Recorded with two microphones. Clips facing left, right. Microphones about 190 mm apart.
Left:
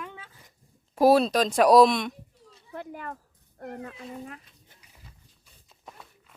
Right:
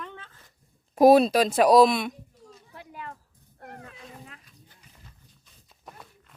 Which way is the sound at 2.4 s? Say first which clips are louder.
Right 5 dB; 45° right (ahead or behind).